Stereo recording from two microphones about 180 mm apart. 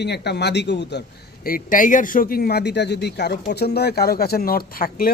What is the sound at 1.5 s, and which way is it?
Speech, 50° left (ahead or behind).